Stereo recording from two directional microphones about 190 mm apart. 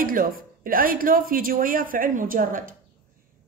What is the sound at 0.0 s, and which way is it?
Speech, 50° right (ahead or behind).